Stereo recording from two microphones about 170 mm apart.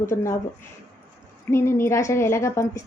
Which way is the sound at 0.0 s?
15° left (ahead or behind).